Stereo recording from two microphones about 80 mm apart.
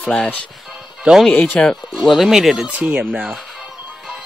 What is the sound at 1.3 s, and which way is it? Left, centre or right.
Speech, centre.